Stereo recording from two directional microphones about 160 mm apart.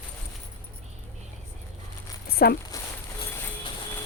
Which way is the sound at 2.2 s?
70° left (ahead or behind).